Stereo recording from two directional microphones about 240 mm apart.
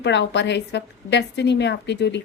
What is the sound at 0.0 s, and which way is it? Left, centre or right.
A woman's voice, left.